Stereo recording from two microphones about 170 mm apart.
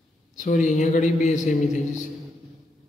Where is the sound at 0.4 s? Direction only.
45° left (ahead or behind).